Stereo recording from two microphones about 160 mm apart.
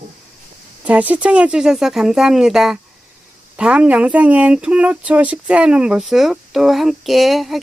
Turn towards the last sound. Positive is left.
turn(degrees=0)  # may be behind; listen again after turning